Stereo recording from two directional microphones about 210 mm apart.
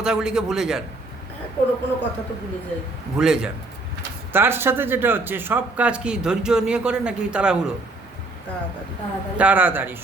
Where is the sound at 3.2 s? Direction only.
5° right (ahead or behind).